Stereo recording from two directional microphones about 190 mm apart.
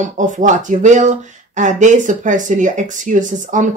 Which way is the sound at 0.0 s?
40° right (ahead or behind).